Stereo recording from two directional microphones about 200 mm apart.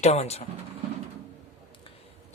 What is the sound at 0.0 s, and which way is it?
Speech, 35° left (ahead or behind).